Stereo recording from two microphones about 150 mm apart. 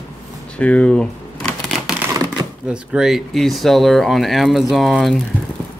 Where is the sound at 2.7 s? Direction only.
5° right (ahead or behind).